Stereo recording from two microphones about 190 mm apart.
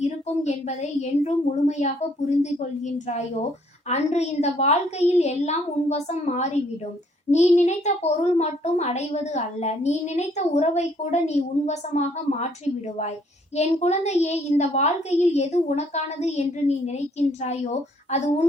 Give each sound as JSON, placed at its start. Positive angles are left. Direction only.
{"t": 0.0, "sound": "a child's voice", "side_deg": 35}
{"t": 13.6, "sound": "a child's voice", "side_deg": 35}